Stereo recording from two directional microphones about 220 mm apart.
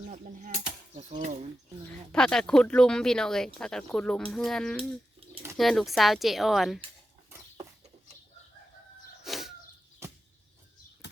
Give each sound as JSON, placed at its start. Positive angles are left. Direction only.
{"t": 0.9, "sound": "speech", "side_deg": -30}
{"t": 2.1, "sound": "speech", "side_deg": 5}
{"t": 4.8, "sound": "a sound", "side_deg": -25}
{"t": 5.5, "sound": "speech", "side_deg": 0}
{"t": 9.2, "sound": "bird", "side_deg": 0}